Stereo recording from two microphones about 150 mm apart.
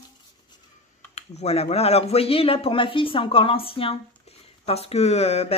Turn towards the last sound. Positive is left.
turn(degrees=45)  # may be behind; listen again after turning